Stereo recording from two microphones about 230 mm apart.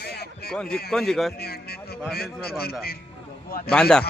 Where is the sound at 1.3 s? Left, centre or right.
Left.